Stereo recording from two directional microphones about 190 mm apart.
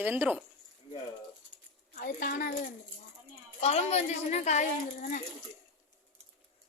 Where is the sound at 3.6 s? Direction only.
35° left (ahead or behind).